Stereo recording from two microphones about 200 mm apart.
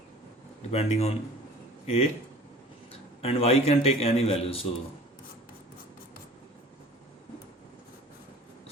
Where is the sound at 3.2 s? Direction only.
30° left (ahead or behind).